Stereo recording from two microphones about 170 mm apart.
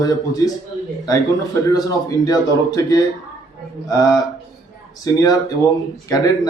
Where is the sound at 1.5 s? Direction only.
20° left (ahead or behind).